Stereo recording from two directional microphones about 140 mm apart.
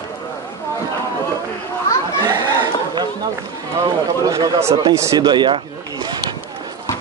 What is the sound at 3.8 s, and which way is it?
Speech, 25° right (ahead or behind).